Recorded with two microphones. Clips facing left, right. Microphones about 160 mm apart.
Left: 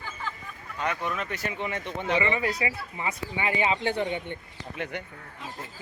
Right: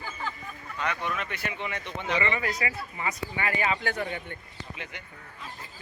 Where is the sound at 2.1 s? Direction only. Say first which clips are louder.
Left 2 dB; 20° left (ahead or behind).